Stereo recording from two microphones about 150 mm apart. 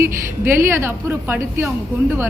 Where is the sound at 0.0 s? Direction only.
15° right (ahead or behind).